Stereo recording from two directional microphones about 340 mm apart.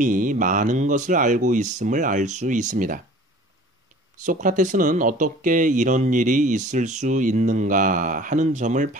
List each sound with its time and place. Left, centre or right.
0.0 s speech: right
4.2 s speech: right